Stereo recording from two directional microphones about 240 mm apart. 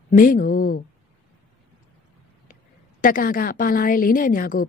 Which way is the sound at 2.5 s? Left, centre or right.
Left.